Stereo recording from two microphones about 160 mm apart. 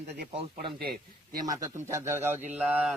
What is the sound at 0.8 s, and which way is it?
Speech, 70° right (ahead or behind).